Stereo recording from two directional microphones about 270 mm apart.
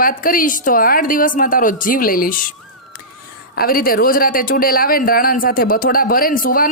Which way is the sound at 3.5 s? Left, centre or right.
Left.